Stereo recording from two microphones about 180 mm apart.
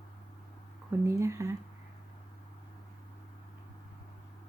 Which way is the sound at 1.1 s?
15° right (ahead or behind).